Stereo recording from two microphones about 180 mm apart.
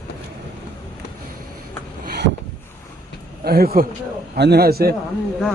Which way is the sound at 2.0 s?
60° right (ahead or behind).